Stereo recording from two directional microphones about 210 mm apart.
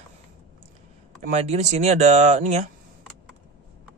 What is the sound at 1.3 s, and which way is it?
Speech, 35° right (ahead or behind).